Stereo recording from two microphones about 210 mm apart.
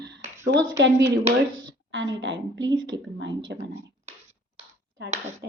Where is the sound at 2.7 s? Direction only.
20° right (ahead or behind).